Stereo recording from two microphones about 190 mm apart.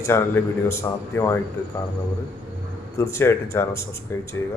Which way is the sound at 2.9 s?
15° left (ahead or behind).